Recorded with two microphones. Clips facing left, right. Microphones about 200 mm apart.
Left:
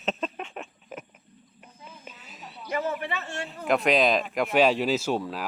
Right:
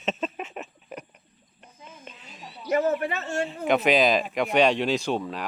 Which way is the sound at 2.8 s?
45° right (ahead or behind).